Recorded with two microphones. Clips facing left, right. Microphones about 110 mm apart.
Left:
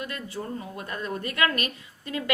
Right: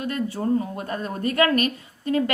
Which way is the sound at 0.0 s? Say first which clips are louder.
Right 8 dB; 40° right (ahead or behind).